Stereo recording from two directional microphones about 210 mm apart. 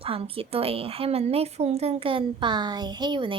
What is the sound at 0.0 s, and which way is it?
A woman's voice, 25° right (ahead or behind).